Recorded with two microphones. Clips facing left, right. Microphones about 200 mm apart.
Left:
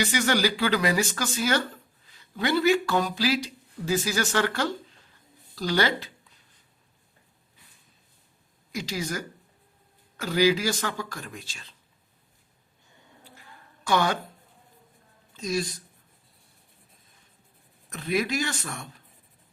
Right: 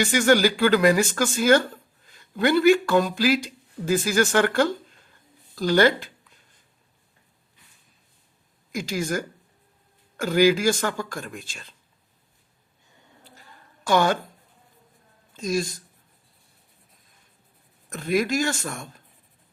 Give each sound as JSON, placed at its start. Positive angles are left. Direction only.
{"t": 0.0, "sound": "speech", "side_deg": -50}
{"t": 8.7, "sound": "speech", "side_deg": -50}
{"t": 13.8, "sound": "speech", "side_deg": -45}
{"t": 15.3, "sound": "speech", "side_deg": -45}
{"t": 17.8, "sound": "speech", "side_deg": -45}